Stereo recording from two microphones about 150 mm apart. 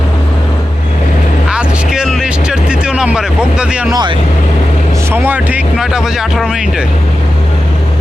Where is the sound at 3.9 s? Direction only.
30° right (ahead or behind).